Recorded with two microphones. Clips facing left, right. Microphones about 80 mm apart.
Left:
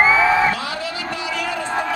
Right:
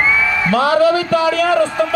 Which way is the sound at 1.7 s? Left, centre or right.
Left.